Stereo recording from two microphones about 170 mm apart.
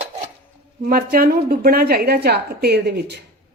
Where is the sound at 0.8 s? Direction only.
60° right (ahead or behind).